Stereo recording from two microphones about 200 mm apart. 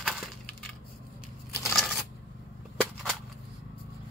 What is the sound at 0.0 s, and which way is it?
Wood, 5° left (ahead or behind).